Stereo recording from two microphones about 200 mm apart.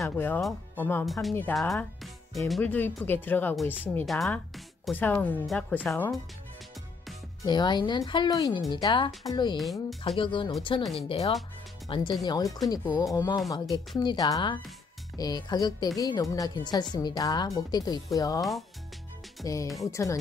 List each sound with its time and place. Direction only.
0.0 s speech: 10° left (ahead or behind)
7.4 s speech: 20° left (ahead or behind)
8.5 s speech: centre (ahead or behind)
8.8 s speech: 25° left (ahead or behind)
9.6 s speech: centre (ahead or behind)
10.0 s speech: 25° left (ahead or behind)
10.8 s speech: centre (ahead or behind)
11.1 s speech: 30° left (ahead or behind)
19.4 s speech: 15° left (ahead or behind)